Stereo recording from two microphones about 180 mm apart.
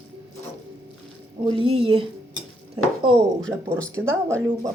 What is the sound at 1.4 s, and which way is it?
Speech, 30° right (ahead or behind).